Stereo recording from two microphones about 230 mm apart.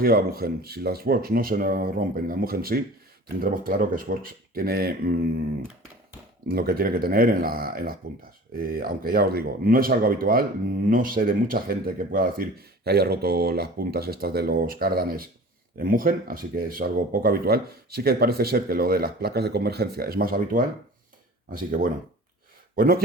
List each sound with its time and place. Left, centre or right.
0.0 s speech: right
6.5 s speech: right